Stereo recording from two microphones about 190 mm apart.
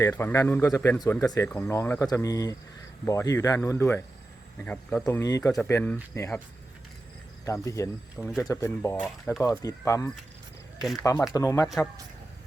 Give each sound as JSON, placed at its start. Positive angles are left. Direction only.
{"t": 0.0, "sound": "speech", "side_deg": 15}
{"t": 5.0, "sound": "speech", "side_deg": 15}
{"t": 7.4, "sound": "speech", "side_deg": 15}
{"t": 9.0, "sound": "speech", "side_deg": 0}
{"t": 9.4, "sound": "speech", "side_deg": 15}